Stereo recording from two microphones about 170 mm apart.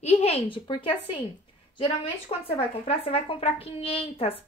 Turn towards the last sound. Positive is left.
turn(degrees=35)  # may be behind; listen again after turning